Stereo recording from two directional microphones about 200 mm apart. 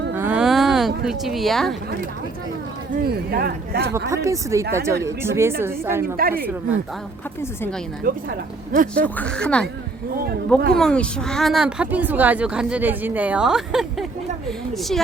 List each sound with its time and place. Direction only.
0.1 s a sound: 10° right (ahead or behind)
2.9 s speech: 50° right (ahead or behind)
4.1 s speech: 15° right (ahead or behind)
6.1 s speech: 45° right (ahead or behind)
8.1 s a woman's voice: 40° right (ahead or behind)
9.0 s speech: 5° left (ahead or behind)
10.8 s speech: 5° left (ahead or behind)